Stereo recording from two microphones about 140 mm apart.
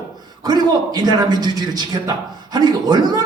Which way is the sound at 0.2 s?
30° right (ahead or behind).